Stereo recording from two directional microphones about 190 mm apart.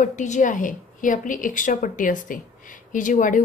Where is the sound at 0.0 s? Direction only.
40° left (ahead or behind).